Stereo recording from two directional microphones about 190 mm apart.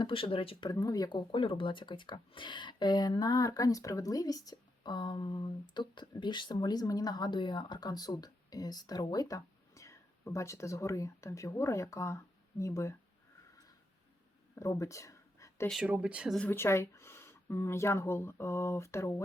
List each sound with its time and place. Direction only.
0.0 s speech: 25° left (ahead or behind)
14.5 s a sound: 15° left (ahead or behind)
15.7 s speech: 5° right (ahead or behind)
16.5 s speech: 15° left (ahead or behind)